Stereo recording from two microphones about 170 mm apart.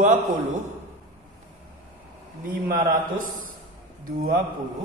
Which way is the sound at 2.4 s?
55° right (ahead or behind).